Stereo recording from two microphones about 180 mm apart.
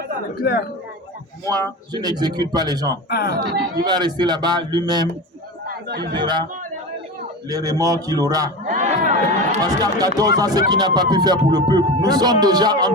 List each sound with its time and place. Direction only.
0.4 s a man's voice: 60° left (ahead or behind)
1.5 s speech: 20° right (ahead or behind)
3.1 s a man's voice: 60° left (ahead or behind)
3.8 s speech: 25° right (ahead or behind)
5.6 s speech: 60° right (ahead or behind)
6.1 s speech: 25° right (ahead or behind)
7.5 s speech: 20° right (ahead or behind)
8.6 s crowd: 40° right (ahead or behind)
9.6 s speech: 20° right (ahead or behind)